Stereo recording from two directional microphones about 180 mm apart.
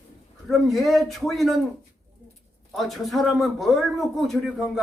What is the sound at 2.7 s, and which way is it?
A man's voice, centre (ahead or behind).